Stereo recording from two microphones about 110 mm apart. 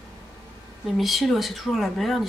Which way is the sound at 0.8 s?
Centre (ahead or behind).